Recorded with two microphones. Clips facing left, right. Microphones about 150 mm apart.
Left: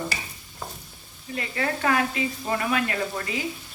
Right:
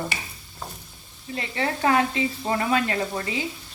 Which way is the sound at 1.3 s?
25° right (ahead or behind).